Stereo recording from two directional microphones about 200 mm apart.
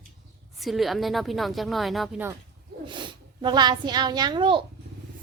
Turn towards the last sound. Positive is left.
turn(degrees=-25)  # may be behind; listen again after turning